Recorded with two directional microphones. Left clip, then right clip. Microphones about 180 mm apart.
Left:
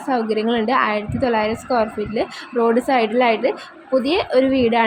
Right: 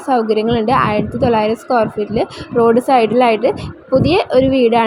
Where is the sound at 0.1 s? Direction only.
15° right (ahead or behind).